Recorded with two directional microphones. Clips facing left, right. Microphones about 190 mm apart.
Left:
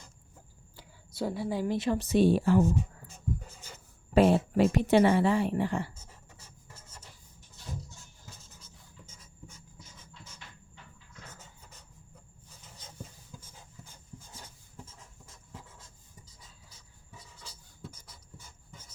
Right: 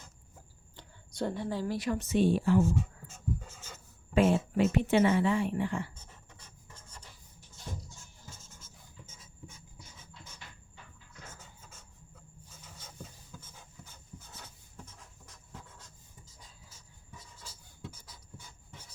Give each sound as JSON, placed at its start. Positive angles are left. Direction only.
{"t": 0.8, "sound": "speech", "side_deg": 5}
{"t": 2.6, "sound": "dog", "side_deg": 15}
{"t": 4.1, "sound": "a woman's voice", "side_deg": 35}
{"t": 5.9, "sound": "pant", "side_deg": 10}
{"t": 13.8, "sound": "rub", "side_deg": 10}
{"t": 15.5, "sound": "writing", "side_deg": 10}